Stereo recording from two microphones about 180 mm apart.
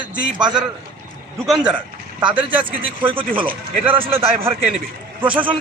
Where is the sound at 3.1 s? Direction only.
10° right (ahead or behind).